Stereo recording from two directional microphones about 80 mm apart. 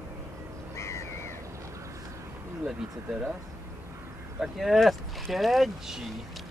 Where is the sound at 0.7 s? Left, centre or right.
Left.